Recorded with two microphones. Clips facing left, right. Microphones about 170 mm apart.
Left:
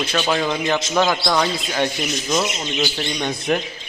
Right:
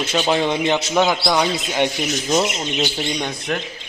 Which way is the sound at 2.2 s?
30° right (ahead or behind).